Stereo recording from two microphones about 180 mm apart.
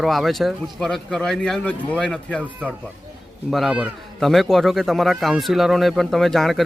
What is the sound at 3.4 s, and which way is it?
Speech, centre (ahead or behind).